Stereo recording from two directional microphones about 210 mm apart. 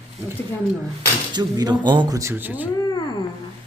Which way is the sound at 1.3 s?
20° right (ahead or behind).